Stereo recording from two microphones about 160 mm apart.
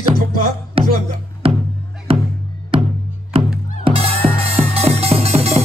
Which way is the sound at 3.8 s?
40° right (ahead or behind).